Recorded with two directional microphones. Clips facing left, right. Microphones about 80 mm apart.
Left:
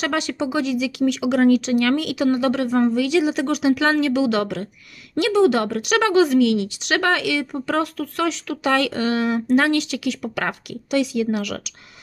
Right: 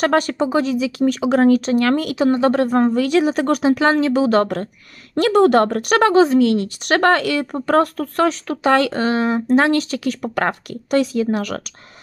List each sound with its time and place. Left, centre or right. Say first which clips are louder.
0.0 s speech: right 6 dB; right